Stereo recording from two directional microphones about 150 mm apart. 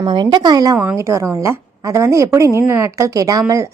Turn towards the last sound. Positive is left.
turn(degrees=-20)  # may be behind; listen again after turning